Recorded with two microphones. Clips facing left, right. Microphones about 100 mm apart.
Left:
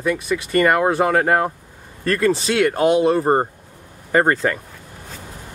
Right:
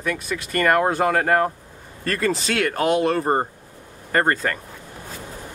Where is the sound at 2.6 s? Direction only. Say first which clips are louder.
Left 4 dB; 25° left (ahead or behind).